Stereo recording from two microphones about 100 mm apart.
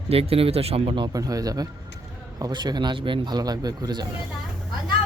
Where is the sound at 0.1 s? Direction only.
75° right (ahead or behind).